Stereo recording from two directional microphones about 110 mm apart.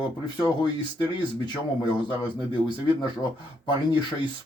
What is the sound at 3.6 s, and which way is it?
Speech, 45° left (ahead or behind).